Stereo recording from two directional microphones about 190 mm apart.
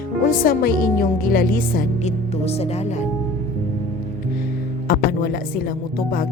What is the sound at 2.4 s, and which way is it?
Speech, 35° left (ahead or behind).